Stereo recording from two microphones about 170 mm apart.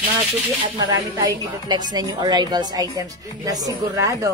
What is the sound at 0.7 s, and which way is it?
A woman's voice, 25° right (ahead or behind).